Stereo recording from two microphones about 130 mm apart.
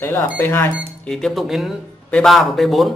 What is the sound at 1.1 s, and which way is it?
Speech, centre (ahead or behind).